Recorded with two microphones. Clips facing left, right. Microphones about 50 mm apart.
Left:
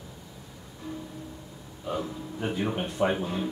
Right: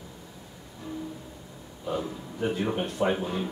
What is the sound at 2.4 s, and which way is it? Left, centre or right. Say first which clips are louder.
Speech: right 2 dB; centre.